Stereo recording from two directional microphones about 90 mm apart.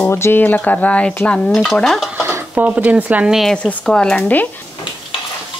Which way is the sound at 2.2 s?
30° right (ahead or behind).